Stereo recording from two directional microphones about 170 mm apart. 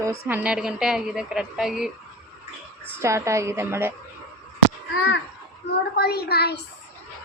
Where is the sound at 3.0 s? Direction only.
15° right (ahead or behind).